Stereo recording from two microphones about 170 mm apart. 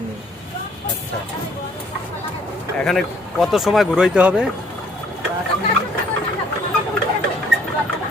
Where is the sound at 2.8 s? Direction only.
Centre (ahead or behind).